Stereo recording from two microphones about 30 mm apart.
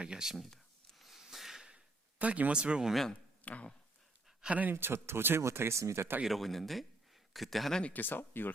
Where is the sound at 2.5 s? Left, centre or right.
Right.